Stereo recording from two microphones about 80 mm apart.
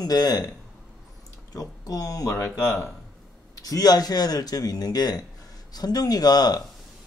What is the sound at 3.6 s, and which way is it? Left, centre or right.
Speech, left.